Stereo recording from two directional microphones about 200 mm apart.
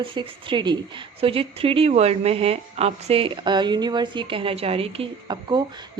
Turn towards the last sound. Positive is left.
turn(degrees=-20)  # may be behind; listen again after turning